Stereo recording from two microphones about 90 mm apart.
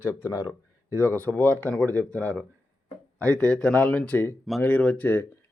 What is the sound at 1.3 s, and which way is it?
Speech, 20° left (ahead or behind).